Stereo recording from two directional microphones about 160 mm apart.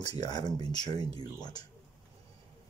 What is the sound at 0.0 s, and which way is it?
Speech, 25° left (ahead or behind).